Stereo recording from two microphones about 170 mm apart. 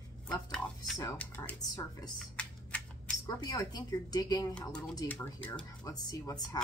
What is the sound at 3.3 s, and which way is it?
A woman's voice, 25° left (ahead or behind).